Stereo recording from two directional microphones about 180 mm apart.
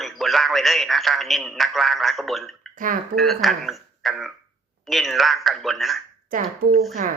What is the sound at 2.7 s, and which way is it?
Speech, 45° right (ahead or behind).